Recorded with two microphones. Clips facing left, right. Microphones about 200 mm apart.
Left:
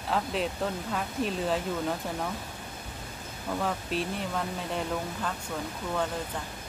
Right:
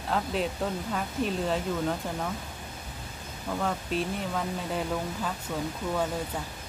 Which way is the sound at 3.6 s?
Centre (ahead or behind).